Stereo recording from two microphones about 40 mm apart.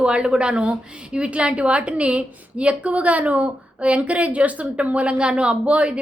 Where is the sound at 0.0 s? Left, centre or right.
Right.